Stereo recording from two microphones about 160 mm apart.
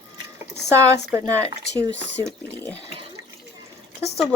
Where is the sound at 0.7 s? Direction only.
20° right (ahead or behind).